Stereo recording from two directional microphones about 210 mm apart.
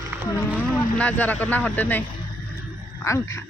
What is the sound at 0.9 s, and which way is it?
Speech, 5° left (ahead or behind).